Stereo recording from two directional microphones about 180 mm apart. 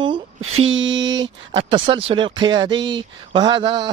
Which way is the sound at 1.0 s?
20° right (ahead or behind).